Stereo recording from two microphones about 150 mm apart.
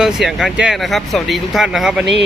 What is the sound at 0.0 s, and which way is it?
Speech, 5° right (ahead or behind).